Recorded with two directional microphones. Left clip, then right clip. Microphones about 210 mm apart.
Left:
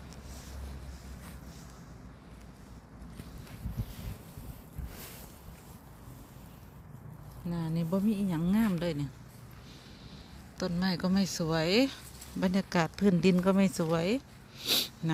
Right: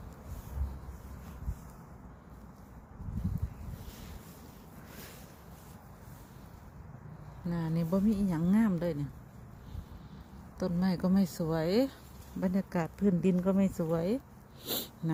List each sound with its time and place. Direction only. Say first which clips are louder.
7.5 s speech: right 1 dB; 5° right (ahead or behind)
10.6 s speech: left 1 dB; 15° right (ahead or behind)
14.6 s sniff: left 9 dB; 10° right (ahead or behind)